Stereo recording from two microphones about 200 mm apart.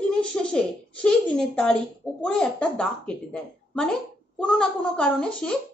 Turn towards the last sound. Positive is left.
turn(degrees=5)  # may be behind; listen again after turning